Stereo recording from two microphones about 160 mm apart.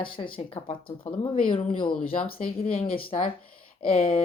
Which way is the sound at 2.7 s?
35° left (ahead or behind).